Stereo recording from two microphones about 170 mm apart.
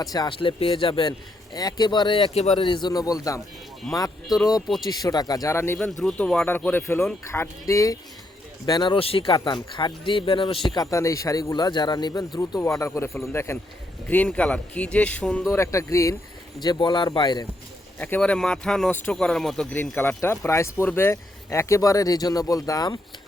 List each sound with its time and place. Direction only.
0.0 s speech: 25° left (ahead or behind); by 2.6 s 40° left (ahead or behind)
2.6 s speech: 30° left (ahead or behind)
3.8 s speech: centre (ahead or behind)
4.9 s speech: 20° left (ahead or behind)
5.8 s speech: 5° left (ahead or behind); by 17.4 s 25° left (ahead or behind)
18.0 s speech: 10° left (ahead or behind)